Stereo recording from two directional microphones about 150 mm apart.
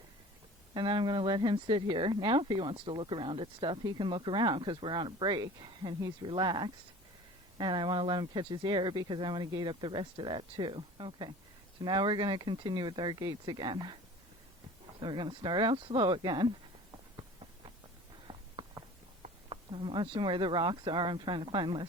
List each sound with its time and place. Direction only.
0.7 s speech: 30° right (ahead or behind)
15.0 s speech: 30° right (ahead or behind)
17.2 s a sound: 35° right (ahead or behind)
19.5 s speech: 35° right (ahead or behind)